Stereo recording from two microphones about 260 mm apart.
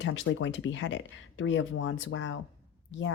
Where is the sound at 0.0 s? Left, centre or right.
Left.